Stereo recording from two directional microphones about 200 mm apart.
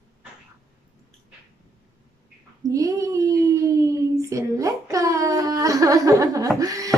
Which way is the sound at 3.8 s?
15° right (ahead or behind).